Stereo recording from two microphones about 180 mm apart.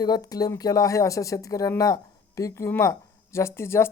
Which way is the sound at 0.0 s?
20° left (ahead or behind).